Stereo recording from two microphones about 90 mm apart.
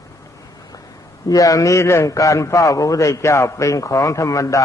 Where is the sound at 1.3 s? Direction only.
40° left (ahead or behind).